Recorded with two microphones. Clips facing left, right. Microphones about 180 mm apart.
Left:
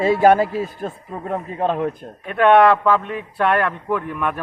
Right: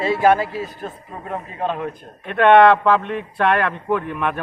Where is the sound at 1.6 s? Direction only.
45° left (ahead or behind).